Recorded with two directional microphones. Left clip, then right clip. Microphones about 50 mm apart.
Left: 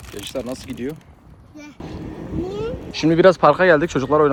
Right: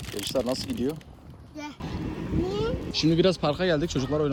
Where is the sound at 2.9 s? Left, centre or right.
Right.